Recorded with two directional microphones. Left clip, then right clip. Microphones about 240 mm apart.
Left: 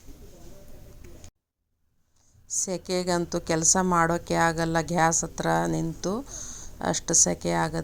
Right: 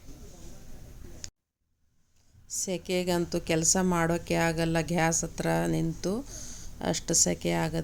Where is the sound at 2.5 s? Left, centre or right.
Centre.